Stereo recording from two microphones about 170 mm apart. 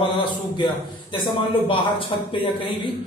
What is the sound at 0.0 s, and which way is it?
A man's voice, 25° left (ahead or behind).